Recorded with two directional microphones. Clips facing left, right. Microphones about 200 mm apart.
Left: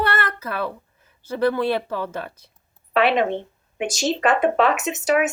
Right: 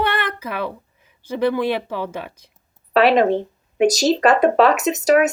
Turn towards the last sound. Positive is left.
turn(degrees=-40)  # may be behind; listen again after turning